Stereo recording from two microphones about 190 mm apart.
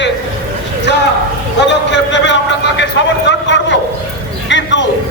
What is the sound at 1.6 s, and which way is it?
A man's voice, 70° left (ahead or behind).